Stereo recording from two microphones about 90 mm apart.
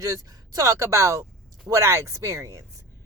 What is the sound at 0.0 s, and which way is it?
Speech, 40° right (ahead or behind).